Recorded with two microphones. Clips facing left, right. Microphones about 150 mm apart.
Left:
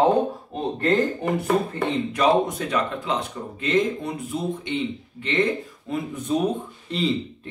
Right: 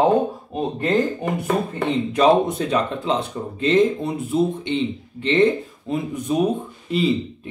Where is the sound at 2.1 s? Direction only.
30° right (ahead or behind).